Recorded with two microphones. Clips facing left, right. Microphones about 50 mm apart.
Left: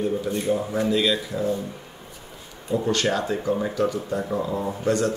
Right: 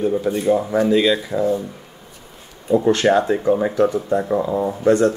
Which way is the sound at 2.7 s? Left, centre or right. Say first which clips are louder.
Right 8 dB; right.